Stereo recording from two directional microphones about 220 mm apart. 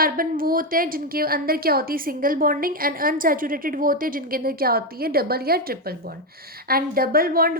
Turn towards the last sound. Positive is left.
turn(degrees=-40)  # may be behind; listen again after turning